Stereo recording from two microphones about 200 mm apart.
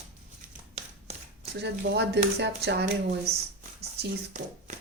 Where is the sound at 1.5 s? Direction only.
55° right (ahead or behind).